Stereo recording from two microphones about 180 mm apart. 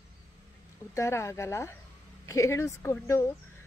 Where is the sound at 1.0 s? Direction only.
15° left (ahead or behind).